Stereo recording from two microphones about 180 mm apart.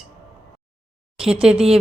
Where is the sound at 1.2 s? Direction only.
5° right (ahead or behind).